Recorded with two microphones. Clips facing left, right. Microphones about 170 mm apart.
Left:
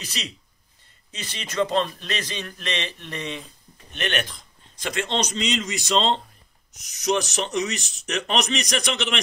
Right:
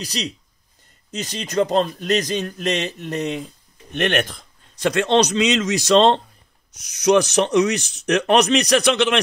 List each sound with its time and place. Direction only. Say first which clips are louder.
0.0 s speech: right 8 dB; 40° right (ahead or behind)
4.7 s a man's voice: right 9 dB; 70° right (ahead or behind)